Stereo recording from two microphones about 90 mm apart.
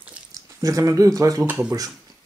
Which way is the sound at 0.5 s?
40° right (ahead or behind).